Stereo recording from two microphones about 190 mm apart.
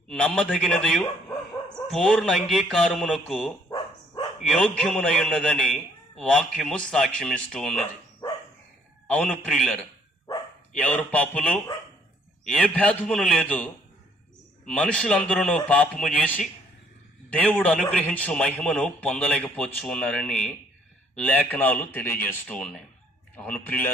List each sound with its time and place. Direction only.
0.1 s a man's voice: 5° left (ahead or behind)
3.7 s dog: 20° left (ahead or behind)
4.4 s a man's voice: 5° left (ahead or behind)
8.2 s dog: 15° left (ahead or behind)
9.0 s a man's voice: 5° left (ahead or behind)
14.7 s a man's voice: 5° left (ahead or behind)